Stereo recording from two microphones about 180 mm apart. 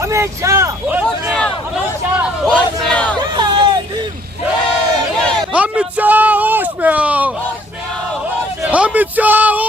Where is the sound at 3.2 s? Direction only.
25° right (ahead or behind).